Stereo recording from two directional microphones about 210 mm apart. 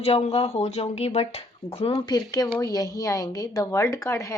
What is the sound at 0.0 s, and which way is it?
A woman's voice, 25° left (ahead or behind).